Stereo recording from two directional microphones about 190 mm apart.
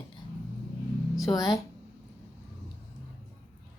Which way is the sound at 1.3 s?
20° left (ahead or behind).